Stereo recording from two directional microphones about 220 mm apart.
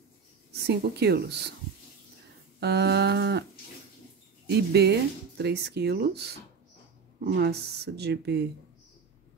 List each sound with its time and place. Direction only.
0.7 s speech: 50° right (ahead or behind)
2.6 s speech: 50° right (ahead or behind)
4.5 s speech: 50° right (ahead or behind)